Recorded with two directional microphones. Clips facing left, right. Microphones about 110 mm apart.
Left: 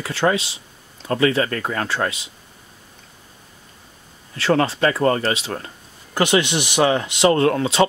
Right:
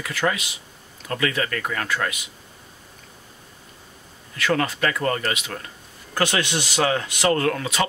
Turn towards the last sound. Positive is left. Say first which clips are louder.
# left 6 dB
turn(degrees=25)  # may be behind; listen again after turning